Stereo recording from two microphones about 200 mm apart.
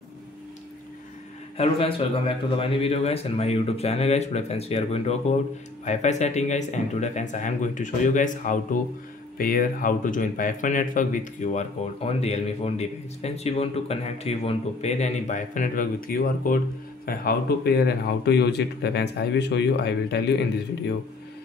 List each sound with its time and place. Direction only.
1.6 s a man's voice: 30° left (ahead or behind); by 20.4 s 55° left (ahead or behind)